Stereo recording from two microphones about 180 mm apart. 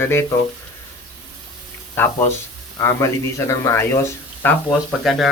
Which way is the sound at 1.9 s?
10° left (ahead or behind).